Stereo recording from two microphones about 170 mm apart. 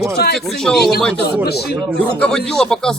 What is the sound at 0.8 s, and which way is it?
Speech, 70° left (ahead or behind).